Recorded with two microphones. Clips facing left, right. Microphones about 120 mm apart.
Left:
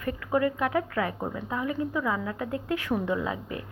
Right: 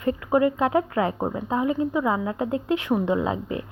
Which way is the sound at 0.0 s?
25° right (ahead or behind).